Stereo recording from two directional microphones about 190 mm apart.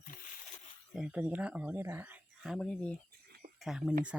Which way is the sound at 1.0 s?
5° right (ahead or behind).